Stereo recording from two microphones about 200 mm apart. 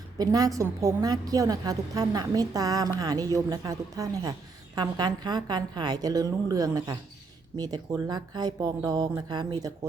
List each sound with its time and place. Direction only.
0.2 s a woman's voice: 20° right (ahead or behind)